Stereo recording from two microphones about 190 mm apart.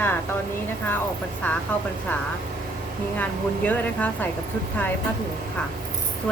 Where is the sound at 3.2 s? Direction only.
10° left (ahead or behind).